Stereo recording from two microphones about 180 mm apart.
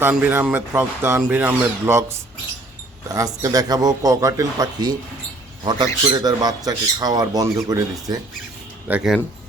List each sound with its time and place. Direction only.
0.0 s speech: 10° right (ahead or behind)
3.2 s speech: 20° right (ahead or behind)
8.9 s speech: 5° right (ahead or behind)